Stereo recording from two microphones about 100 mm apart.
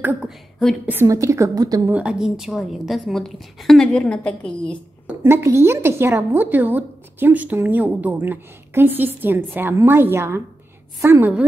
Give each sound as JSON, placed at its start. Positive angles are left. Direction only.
{"t": 1.0, "sound": "a woman's voice", "side_deg": -30}
{"t": 1.9, "sound": "a woman's voice", "side_deg": -15}
{"t": 5.2, "sound": "a woman's voice", "side_deg": -25}